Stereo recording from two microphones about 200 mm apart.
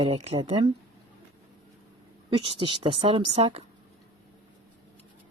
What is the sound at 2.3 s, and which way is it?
A woman's voice, 25° right (ahead or behind).